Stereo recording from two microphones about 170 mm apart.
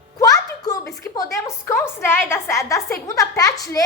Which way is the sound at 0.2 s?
20° left (ahead or behind).